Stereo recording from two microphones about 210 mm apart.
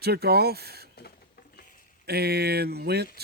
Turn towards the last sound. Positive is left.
turn(degrees=-50)  # may be behind; listen again after turning